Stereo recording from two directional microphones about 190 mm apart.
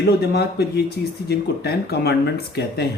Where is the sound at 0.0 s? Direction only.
60° left (ahead or behind).